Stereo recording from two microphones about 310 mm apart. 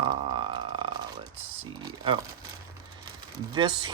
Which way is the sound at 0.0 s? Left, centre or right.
Centre.